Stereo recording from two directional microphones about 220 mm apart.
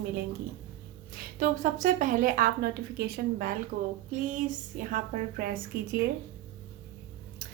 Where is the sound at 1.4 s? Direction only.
35° right (ahead or behind).